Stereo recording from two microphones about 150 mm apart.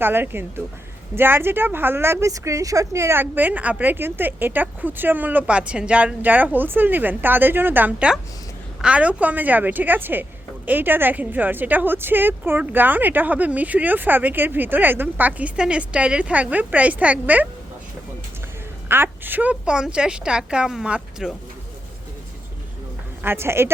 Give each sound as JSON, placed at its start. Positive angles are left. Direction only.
{"t": 0.0, "sound": "a woman's voice", "side_deg": -15}
{"t": 18.9, "sound": "a woman's voice", "side_deg": -15}
{"t": 23.2, "sound": "a woman's voice", "side_deg": -15}